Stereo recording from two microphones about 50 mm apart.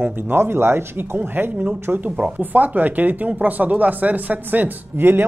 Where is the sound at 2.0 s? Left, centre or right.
Right.